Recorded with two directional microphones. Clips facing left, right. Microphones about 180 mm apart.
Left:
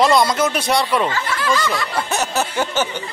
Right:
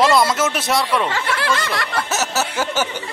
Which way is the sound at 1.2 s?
70° right (ahead or behind).